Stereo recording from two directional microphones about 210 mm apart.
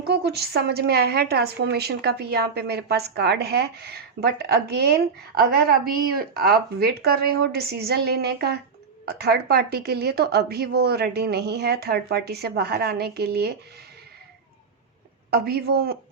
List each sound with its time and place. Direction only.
0.1 s a woman's voice: 50° right (ahead or behind)
15.3 s a woman's voice: 50° right (ahead or behind)